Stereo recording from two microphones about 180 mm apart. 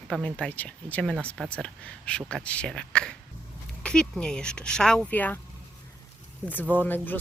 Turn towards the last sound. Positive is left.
turn(degrees=10)  # may be behind; listen again after turning